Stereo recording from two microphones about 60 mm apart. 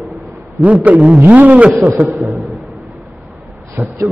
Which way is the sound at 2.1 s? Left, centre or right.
Centre.